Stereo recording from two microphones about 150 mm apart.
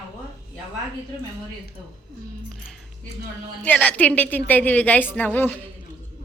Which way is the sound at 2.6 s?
Centre (ahead or behind).